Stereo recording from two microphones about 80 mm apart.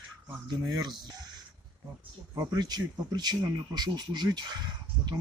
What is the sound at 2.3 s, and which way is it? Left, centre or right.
Speech, right.